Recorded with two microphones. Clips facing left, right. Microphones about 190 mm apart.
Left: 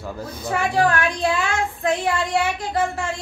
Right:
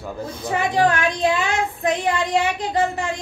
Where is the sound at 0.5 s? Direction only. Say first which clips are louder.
Right 1 dB; 20° right (ahead or behind).